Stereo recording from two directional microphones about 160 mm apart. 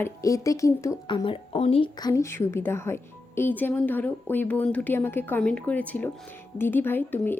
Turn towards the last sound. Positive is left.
turn(degrees=10)  # may be behind; listen again after turning